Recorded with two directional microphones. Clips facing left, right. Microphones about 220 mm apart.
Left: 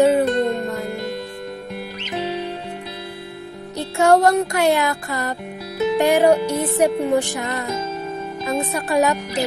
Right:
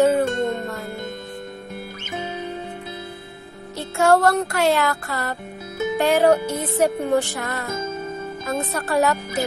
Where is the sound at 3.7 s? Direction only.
15° left (ahead or behind).